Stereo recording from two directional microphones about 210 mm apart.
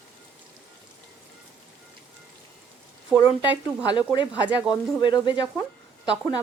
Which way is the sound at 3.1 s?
5° right (ahead or behind).